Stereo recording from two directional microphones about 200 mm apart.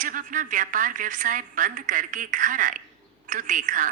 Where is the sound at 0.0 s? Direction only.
40° right (ahead or behind).